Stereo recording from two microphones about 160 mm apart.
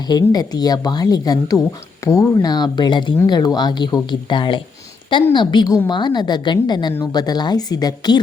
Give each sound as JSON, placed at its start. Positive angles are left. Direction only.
{"t": 0.1, "sound": "speech", "side_deg": 25}